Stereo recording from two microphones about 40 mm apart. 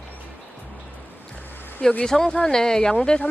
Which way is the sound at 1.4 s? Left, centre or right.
Left.